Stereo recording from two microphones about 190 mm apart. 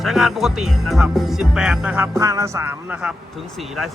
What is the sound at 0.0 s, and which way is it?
Speech, centre (ahead or behind).